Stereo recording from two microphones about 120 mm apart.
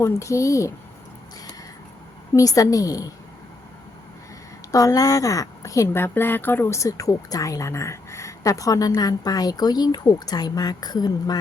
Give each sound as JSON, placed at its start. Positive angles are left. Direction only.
{"t": 0.0, "sound": "a woman's voice", "side_deg": 25}
{"t": 2.3, "sound": "a woman's voice", "side_deg": 30}
{"t": 4.7, "sound": "a woman's voice", "side_deg": 30}